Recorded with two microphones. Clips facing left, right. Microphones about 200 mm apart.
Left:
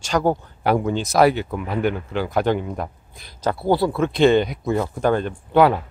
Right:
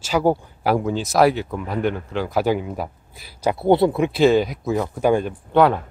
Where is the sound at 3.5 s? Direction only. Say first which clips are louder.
Right 4 dB; 25° right (ahead or behind).